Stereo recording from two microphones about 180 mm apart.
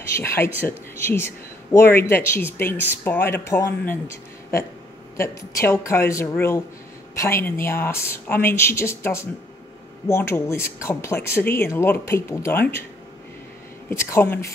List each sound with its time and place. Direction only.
0.2 s speech: 15° left (ahead or behind)
13.8 s speech: 15° left (ahead or behind)